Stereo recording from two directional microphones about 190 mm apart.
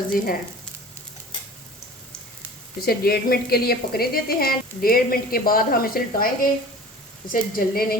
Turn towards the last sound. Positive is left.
turn(degrees=50)  # may be behind; listen again after turning